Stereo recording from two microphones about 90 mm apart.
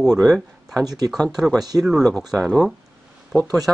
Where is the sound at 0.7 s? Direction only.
45° right (ahead or behind).